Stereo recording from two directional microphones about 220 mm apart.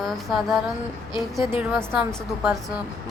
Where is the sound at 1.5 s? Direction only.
10° right (ahead or behind).